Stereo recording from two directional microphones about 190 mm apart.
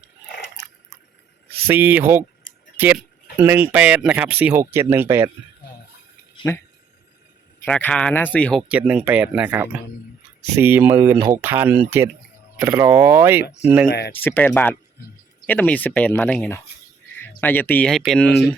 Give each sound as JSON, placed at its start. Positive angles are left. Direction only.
{"t": 0.3, "sound": "biting", "side_deg": 60}
{"t": 1.6, "sound": "speech", "side_deg": -10}
{"t": 6.5, "sound": "speech", "side_deg": 15}
{"t": 8.7, "sound": "speech", "side_deg": -5}
{"t": 13.8, "sound": "speech", "side_deg": 60}
{"t": 14.1, "sound": "speech", "side_deg": 10}